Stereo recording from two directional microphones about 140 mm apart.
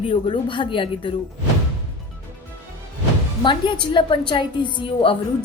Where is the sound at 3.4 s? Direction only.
35° left (ahead or behind).